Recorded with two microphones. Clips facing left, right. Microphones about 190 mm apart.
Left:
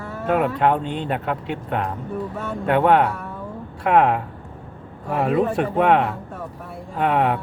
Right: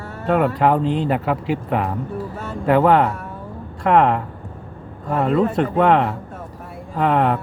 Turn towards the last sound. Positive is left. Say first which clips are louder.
# right 2 dB
turn(degrees=5)  # may be behind; listen again after turning